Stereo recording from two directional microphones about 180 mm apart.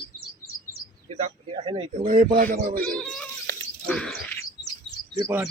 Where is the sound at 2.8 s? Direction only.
5° left (ahead or behind).